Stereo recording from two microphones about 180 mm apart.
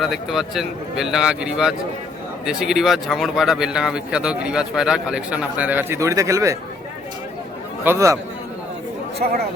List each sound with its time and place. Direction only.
0.0 s speech: centre (ahead or behind); by 6.6 s 15° right (ahead or behind)
7.9 s speech: 15° right (ahead or behind)
9.2 s speech: 45° right (ahead or behind)